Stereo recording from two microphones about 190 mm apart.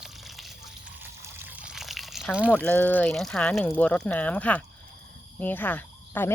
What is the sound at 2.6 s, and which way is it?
Speech, 10° left (ahead or behind).